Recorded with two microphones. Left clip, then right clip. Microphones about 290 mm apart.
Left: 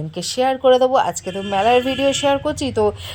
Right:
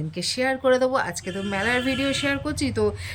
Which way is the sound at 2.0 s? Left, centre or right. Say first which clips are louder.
Left 8 dB; centre.